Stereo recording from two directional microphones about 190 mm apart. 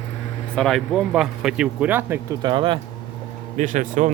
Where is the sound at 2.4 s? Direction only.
25° right (ahead or behind).